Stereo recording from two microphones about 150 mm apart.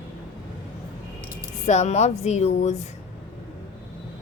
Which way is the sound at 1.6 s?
50° left (ahead or behind).